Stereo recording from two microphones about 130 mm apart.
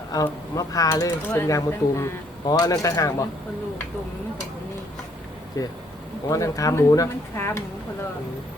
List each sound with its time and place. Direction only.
0.1 s speech: 25° left (ahead or behind)
5.6 s speech: 25° left (ahead or behind)